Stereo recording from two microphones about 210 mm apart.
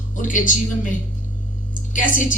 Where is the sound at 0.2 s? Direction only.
40° left (ahead or behind).